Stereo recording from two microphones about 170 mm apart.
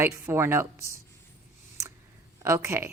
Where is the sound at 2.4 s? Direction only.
15° right (ahead or behind).